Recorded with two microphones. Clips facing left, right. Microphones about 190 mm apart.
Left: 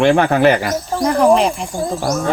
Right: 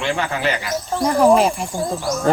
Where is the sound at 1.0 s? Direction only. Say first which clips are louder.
Left 1 dB; 5° right (ahead or behind).